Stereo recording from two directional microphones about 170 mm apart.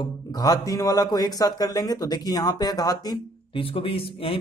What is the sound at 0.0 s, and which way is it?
Speech, 20° left (ahead or behind).